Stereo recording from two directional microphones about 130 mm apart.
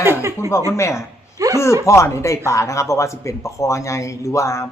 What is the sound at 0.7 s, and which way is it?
Speech, 20° left (ahead or behind).